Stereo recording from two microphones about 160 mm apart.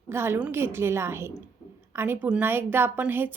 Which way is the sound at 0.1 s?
15° right (ahead or behind).